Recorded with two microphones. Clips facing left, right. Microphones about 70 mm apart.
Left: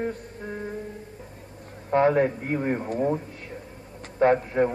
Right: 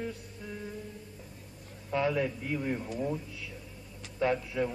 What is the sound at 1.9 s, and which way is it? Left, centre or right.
A man's voice, left.